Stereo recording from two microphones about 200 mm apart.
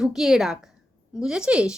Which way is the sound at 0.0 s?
Centre (ahead or behind).